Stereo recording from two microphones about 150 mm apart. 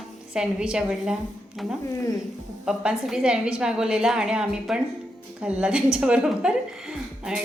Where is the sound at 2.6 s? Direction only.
5° right (ahead or behind).